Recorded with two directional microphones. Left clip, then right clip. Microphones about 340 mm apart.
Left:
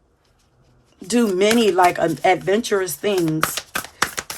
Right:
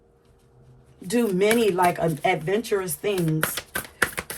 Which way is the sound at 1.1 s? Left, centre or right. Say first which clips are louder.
Left 4 dB; centre.